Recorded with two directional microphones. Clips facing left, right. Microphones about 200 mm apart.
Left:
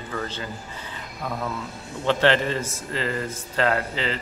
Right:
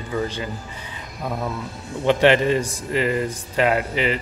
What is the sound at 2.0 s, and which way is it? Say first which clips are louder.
A man's voice: right 4 dB; 15° right (ahead or behind).